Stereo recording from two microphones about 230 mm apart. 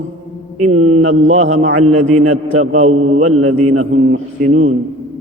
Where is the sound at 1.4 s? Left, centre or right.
Right.